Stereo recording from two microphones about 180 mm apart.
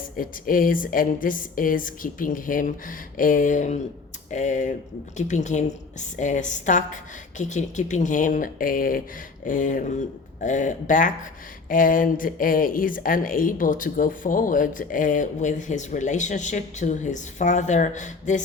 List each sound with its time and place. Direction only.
0.2 s a woman's voice: 50° left (ahead or behind)